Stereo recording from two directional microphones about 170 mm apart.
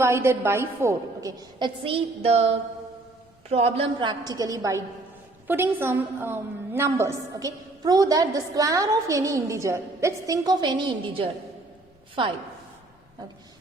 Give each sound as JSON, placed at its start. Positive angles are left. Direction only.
{"t": 0.0, "sound": "a woman's voice", "side_deg": -15}